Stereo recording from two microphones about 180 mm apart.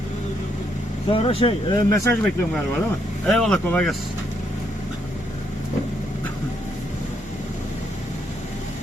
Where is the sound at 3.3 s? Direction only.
5° left (ahead or behind).